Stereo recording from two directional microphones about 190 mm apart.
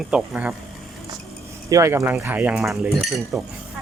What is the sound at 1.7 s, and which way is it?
Speech, 15° right (ahead or behind).